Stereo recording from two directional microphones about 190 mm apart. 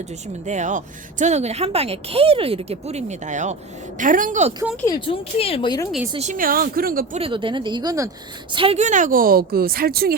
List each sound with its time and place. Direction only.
0.4 s speech: 40° right (ahead or behind)
4.9 s speech: 30° left (ahead or behind)
6.1 s a woman's voice: 40° right (ahead or behind)
7.2 s speech: 25° right (ahead or behind)
8.5 s a woman's voice: 30° right (ahead or behind); by 10.2 s 55° right (ahead or behind)